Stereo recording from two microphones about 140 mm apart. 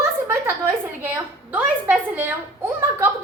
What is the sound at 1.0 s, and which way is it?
A woman's voice, 10° right (ahead or behind).